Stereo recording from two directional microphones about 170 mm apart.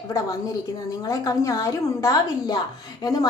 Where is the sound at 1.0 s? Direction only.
20° left (ahead or behind).